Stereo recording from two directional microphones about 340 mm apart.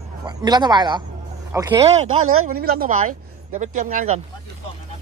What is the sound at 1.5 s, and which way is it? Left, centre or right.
Speech, centre.